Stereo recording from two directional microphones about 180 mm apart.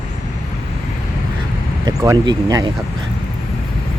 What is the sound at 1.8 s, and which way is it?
Speech, 20° right (ahead or behind).